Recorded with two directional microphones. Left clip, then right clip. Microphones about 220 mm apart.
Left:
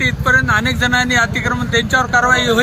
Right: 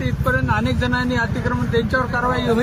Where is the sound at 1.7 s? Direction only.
20° left (ahead or behind).